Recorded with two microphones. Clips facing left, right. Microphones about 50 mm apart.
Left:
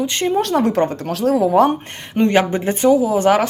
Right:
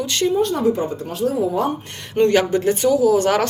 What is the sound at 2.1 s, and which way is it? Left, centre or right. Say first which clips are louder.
Speech: even; left.